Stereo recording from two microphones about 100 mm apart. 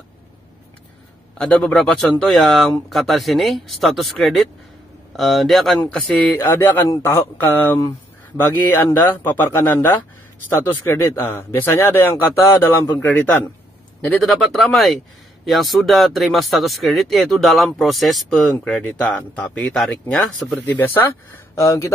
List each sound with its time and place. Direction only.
1.4 s speech: 10° left (ahead or behind)
5.8 s a man's voice: 15° left (ahead or behind)
14.2 s speech: centre (ahead or behind)
18.3 s speech: 15° left (ahead or behind)
19.6 s speech: 5° left (ahead or behind)
20.5 s a man's voice: 20° left (ahead or behind)